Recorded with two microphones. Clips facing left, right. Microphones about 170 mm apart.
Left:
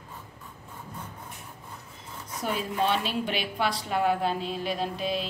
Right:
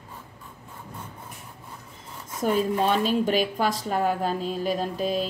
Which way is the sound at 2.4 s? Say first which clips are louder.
Right 5 dB; 45° right (ahead or behind).